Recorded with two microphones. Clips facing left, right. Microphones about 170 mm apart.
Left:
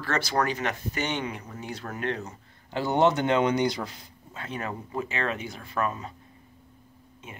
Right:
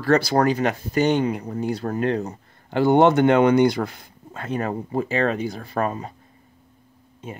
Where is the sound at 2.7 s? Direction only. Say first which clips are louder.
Right 7 dB; 55° right (ahead or behind); by 6.1 s 35° right (ahead or behind).